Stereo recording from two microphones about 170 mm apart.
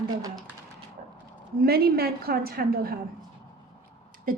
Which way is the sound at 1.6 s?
65° right (ahead or behind).